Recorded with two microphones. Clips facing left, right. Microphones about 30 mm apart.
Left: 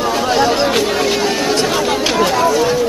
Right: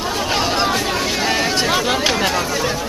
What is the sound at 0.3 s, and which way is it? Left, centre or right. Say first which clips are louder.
Chatter: left 4 dB; centre.